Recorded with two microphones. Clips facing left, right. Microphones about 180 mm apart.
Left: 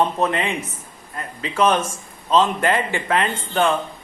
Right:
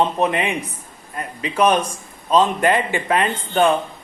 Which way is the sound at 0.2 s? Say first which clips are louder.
Right 2 dB; 15° right (ahead or behind).